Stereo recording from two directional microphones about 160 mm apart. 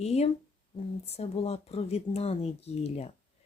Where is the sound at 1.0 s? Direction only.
40° left (ahead or behind).